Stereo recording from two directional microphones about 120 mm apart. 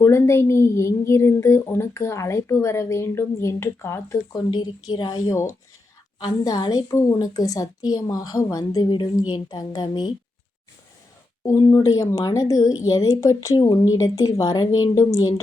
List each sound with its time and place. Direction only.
0.0 s a woman's voice: 20° left (ahead or behind); by 10.1 s 40° left (ahead or behind)
11.4 s a woman's voice: 25° left (ahead or behind)